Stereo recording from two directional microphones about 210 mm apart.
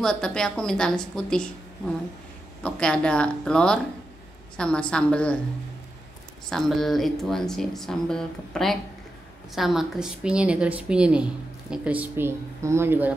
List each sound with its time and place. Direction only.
0.0 s speech: 5° left (ahead or behind)
2.6 s speech: 5° left (ahead or behind)
6.5 s speech: centre (ahead or behind)